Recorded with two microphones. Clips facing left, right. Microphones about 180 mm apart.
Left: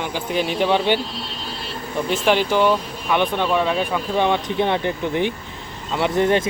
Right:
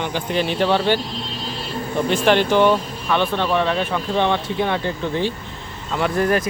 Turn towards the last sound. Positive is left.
turn(degrees=25)  # may be behind; listen again after turning